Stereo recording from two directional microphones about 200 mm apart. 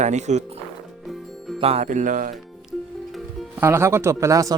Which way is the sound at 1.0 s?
Centre (ahead or behind).